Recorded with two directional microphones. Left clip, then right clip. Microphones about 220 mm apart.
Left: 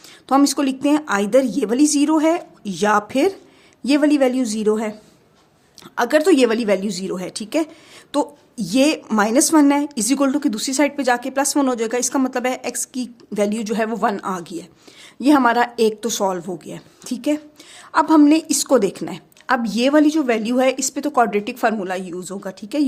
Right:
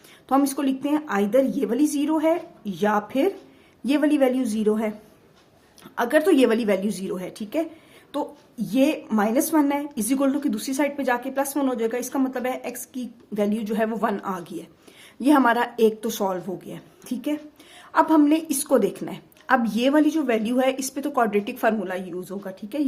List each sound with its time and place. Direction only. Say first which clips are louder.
0.3 s a woman's voice: left 5 dB; 35° left (ahead or behind)